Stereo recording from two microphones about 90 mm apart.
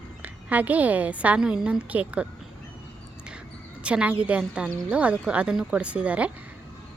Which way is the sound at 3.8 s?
15° right (ahead or behind).